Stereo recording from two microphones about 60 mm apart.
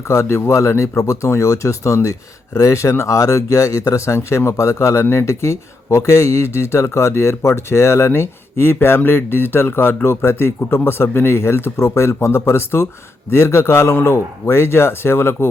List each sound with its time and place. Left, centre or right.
0.1 s speech: left